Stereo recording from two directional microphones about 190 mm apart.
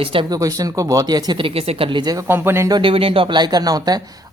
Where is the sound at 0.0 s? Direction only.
25° right (ahead or behind).